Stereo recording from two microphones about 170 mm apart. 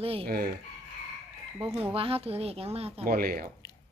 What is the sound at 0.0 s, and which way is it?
Speech, 35° right (ahead or behind).